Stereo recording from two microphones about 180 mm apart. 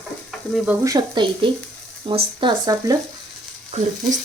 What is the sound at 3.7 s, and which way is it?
Speech, 40° right (ahead or behind).